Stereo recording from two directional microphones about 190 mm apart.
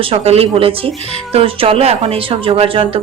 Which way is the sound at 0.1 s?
30° right (ahead or behind).